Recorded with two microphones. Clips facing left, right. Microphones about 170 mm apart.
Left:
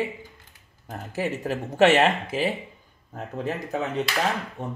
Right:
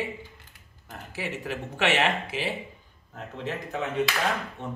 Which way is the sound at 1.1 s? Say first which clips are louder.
Left 6 dB; 40° left (ahead or behind).